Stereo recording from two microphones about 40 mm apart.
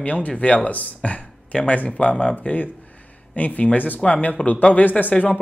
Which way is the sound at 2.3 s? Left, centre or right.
Left.